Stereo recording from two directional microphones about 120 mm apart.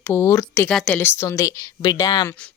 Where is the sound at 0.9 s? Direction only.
20° left (ahead or behind).